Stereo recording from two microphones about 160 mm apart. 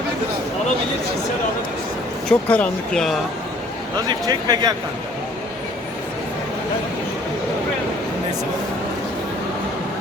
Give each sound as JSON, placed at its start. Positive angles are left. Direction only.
{"t": 2.3, "sound": "speech", "side_deg": 10}
{"t": 4.3, "sound": "speech", "side_deg": -25}